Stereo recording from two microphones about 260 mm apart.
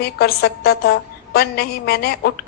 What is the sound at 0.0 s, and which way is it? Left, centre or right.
A woman's voice, left.